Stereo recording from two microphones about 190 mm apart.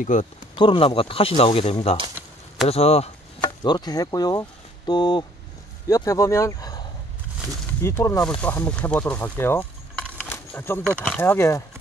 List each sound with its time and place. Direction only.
0.0 s speech: 40° left (ahead or behind)
0.6 s speech: 25° left (ahead or behind)
2.1 s a sound: centre (ahead or behind)
2.7 s speech: 35° left (ahead or behind); by 6.8 s 20° left (ahead or behind)
7.8 s speech: 15° left (ahead or behind)